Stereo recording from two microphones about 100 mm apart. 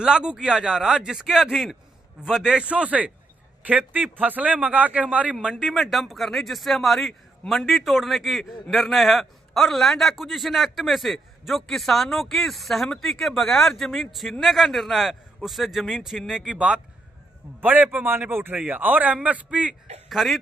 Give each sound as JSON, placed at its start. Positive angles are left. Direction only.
{"t": 0.0, "sound": "a man's voice", "side_deg": -10}
{"t": 20.1, "sound": "speech", "side_deg": 0}